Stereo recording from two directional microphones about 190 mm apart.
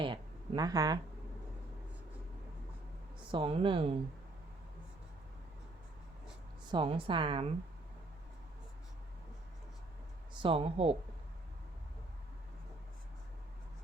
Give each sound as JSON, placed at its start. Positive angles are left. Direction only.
{"t": 0.0, "sound": "a sound", "side_deg": -25}
{"t": 3.3, "sound": "a woman's voice", "side_deg": -25}
{"t": 6.7, "sound": "a woman's voice", "side_deg": -25}
{"t": 10.3, "sound": "a woman's voice", "side_deg": -25}